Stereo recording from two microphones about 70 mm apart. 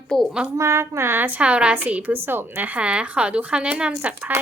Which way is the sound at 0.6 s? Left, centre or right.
Right.